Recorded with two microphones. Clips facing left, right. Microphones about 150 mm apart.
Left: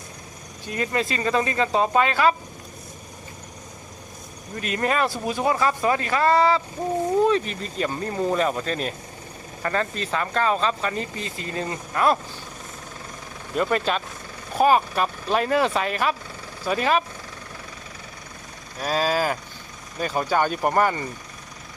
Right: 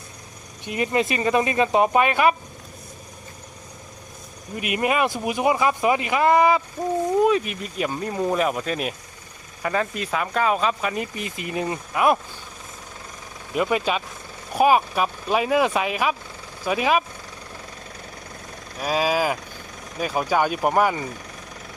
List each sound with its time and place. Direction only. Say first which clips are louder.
0.6 s speech: right 3 dB; 20° right (ahead or behind)
4.5 s speech: right 1 dB; 15° right (ahead or behind)
13.5 s speech: right 1 dB; 5° right (ahead or behind)
18.8 s speech: right 1 dB; 10° right (ahead or behind)